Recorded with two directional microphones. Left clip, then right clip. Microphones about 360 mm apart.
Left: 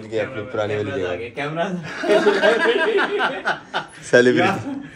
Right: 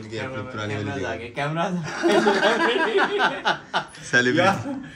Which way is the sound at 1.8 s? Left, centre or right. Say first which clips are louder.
Left 3 dB; right.